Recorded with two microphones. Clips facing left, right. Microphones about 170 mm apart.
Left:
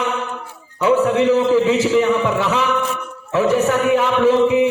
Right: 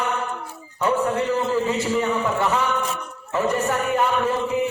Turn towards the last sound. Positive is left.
turn(degrees=90)